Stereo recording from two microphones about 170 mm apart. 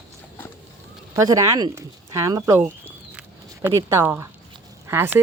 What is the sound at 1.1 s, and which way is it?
Speech, 20° right (ahead or behind).